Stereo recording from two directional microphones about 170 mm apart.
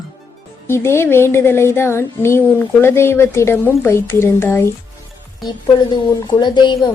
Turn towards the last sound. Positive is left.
turn(degrees=25)  # may be behind; listen again after turning